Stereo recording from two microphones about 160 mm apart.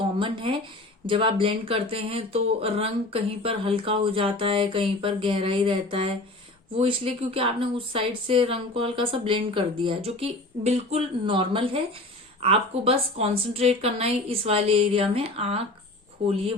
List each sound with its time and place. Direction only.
0.2 s speech: 30° right (ahead or behind)